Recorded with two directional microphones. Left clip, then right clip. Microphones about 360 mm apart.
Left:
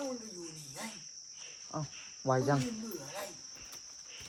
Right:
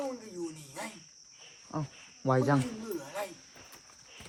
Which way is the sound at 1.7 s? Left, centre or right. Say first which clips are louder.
Right 3 dB; right.